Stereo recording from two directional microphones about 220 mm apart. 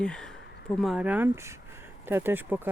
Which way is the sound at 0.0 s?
5° left (ahead or behind).